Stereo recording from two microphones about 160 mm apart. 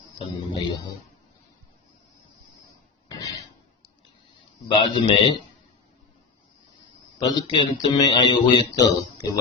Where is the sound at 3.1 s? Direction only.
20° left (ahead or behind).